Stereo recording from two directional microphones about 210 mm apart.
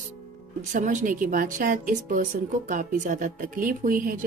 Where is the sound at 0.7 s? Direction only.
40° right (ahead or behind).